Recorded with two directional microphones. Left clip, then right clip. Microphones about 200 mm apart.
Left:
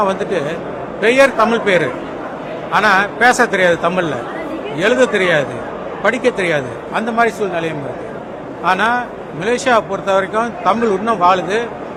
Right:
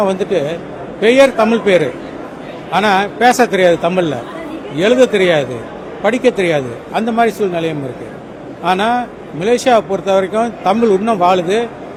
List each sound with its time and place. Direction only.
0.0 s speech: 40° right (ahead or behind)